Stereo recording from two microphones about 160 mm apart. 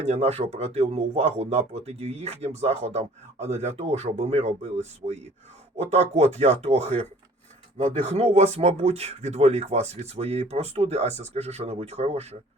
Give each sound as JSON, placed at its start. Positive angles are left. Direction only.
{"t": 0.0, "sound": "speech", "side_deg": -40}
{"t": 8.1, "sound": "speech", "side_deg": -40}